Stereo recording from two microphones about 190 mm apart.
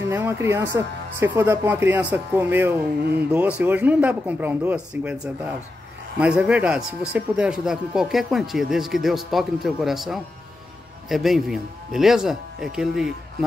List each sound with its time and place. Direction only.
0.1 s a man's voice: 10° right (ahead or behind)